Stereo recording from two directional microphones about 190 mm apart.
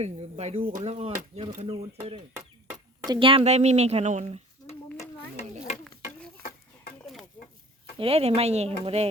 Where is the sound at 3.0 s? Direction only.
25° right (ahead or behind).